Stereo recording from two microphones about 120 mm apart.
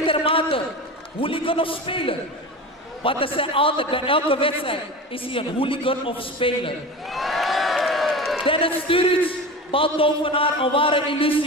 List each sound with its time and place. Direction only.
0.0 s a sound: 50° left (ahead or behind)
1.2 s a man's voice: 50° left (ahead or behind)
7.1 s crowd: centre (ahead or behind)
8.5 s a man's voice: 50° left (ahead or behind)